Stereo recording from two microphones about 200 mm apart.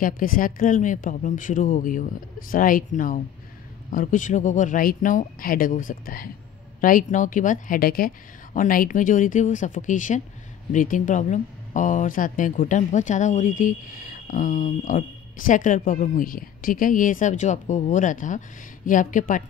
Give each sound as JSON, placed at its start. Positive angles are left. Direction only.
{"t": 0.0, "sound": "speech", "side_deg": 45}